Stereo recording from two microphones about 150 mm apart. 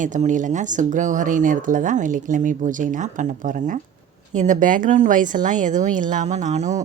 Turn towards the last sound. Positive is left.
turn(degrees=-50)  # may be behind; listen again after turning